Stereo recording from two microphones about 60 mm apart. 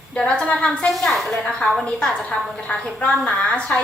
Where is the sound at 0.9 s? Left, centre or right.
Centre.